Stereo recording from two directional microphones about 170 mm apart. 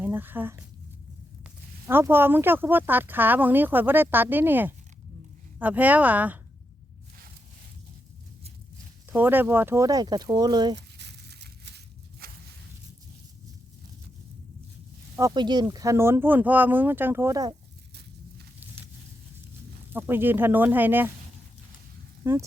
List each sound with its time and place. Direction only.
0.0 s speech: 10° right (ahead or behind)
9.1 s speech: 10° right (ahead or behind)
10.8 s crumpling: 85° right
12.2 s walk: 60° right (ahead or behind)
15.3 s speech: 25° right (ahead or behind)
19.9 s speech: 10° right (ahead or behind)
22.2 s speech: 15° right (ahead or behind)